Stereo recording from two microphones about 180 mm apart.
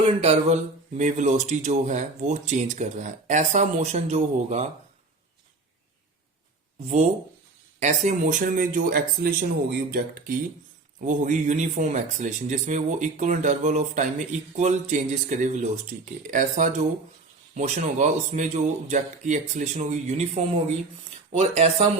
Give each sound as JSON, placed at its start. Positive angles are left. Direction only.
{"t": 0.0, "sound": "speech", "side_deg": -35}
{"t": 6.8, "sound": "speech", "side_deg": -35}
{"t": 11.0, "sound": "speech", "side_deg": -45}